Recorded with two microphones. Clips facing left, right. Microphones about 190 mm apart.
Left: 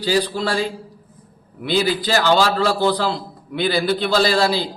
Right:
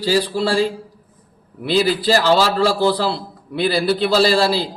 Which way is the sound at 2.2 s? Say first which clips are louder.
Left 2 dB; 5° right (ahead or behind).